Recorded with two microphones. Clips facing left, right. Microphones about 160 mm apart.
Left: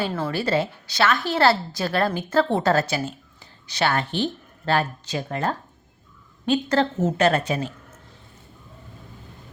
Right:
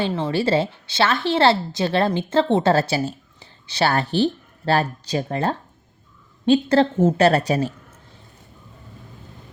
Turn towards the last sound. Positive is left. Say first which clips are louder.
# right 4 dB
turn(degrees=-40)  # may be behind; listen again after turning